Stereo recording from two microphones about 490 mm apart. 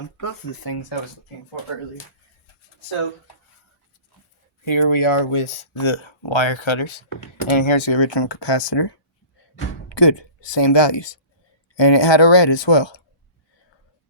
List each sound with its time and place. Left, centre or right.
0.2 s speech: left
4.6 s speech: left